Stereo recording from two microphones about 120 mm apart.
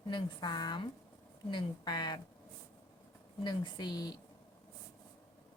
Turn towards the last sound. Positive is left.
turn(degrees=35)  # may be behind; listen again after turning